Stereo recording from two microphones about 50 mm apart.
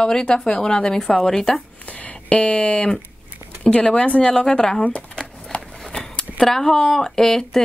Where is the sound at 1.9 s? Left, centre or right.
Left.